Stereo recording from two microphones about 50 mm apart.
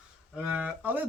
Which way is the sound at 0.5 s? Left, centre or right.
Right.